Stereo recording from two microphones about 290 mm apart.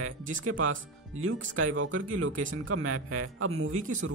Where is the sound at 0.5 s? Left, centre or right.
Right.